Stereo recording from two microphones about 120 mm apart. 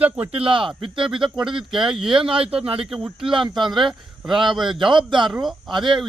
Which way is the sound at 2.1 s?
50° right (ahead or behind).